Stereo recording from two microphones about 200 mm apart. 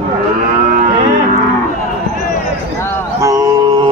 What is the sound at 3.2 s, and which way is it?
Mantra, 15° right (ahead or behind).